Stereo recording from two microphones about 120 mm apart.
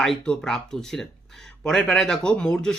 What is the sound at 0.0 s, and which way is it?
Speech, 5° left (ahead or behind).